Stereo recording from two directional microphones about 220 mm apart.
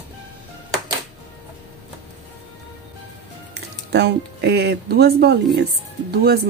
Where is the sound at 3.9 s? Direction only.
50° right (ahead or behind).